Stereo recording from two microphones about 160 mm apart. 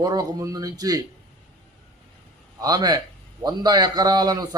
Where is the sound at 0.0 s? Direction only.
20° right (ahead or behind).